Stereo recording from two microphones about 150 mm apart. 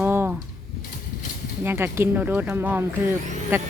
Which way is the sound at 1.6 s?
15° right (ahead or behind).